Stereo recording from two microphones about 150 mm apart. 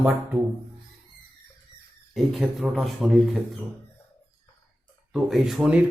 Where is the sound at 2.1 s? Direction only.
Centre (ahead or behind).